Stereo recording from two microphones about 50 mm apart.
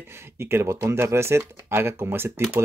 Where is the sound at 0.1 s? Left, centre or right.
Right.